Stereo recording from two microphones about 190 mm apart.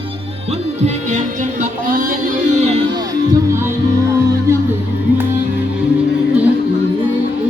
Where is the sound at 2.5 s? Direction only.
35° right (ahead or behind).